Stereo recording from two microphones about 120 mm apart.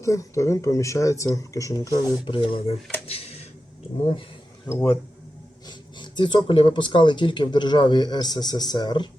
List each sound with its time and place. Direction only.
0.0 s speech: 25° left (ahead or behind)
2.2 s speech: 45° left (ahead or behind)
3.1 s a sound: 55° left (ahead or behind)
4.7 s speech: 30° left (ahead or behind)
5.6 s speech: 40° left (ahead or behind)